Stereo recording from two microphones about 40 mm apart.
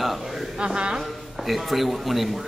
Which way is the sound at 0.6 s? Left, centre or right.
Right.